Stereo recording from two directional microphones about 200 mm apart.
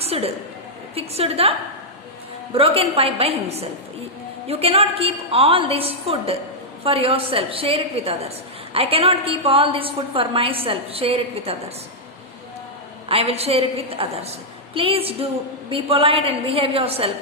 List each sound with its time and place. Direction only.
0.0 s a sound: 30° right (ahead or behind)
0.9 s a woman's voice: 30° right (ahead or behind)
13.1 s a woman's voice: 30° right (ahead or behind)